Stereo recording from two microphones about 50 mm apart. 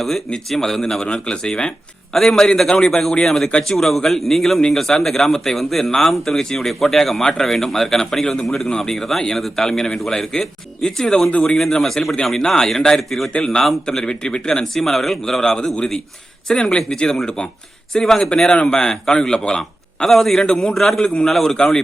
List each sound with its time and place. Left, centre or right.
0.5 s a man's voice: centre
13.3 s speech: centre
14.6 s speech: centre
20.4 s a man's voice: centre
20.7 s a man's voice: centre
21.0 s speech: centre